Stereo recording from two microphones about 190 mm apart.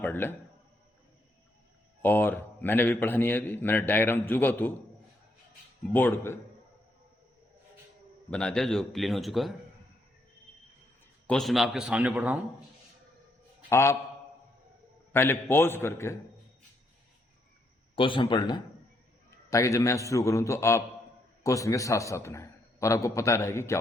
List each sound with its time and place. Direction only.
0.0 s a man's voice: 10° left (ahead or behind)
2.0 s a man's voice: 10° left (ahead or behind)
5.8 s a man's voice: 10° left (ahead or behind)
8.3 s a man's voice: 5° left (ahead or behind)
11.3 s a man's voice: centre (ahead or behind)
13.7 s a man's voice: 15° left (ahead or behind)
15.1 s a man's voice: 10° left (ahead or behind)
17.9 s a man's voice: 25° left (ahead or behind)